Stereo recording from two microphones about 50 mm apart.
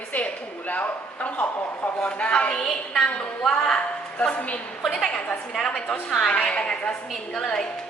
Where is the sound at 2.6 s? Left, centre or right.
Centre.